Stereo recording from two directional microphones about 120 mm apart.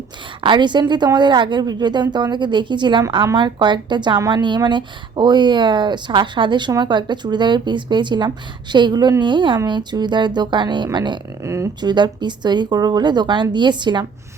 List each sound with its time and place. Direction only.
0.4 s speech: 40° right (ahead or behind)
11.4 s speech: 25° right (ahead or behind)
11.8 s speech: 35° right (ahead or behind)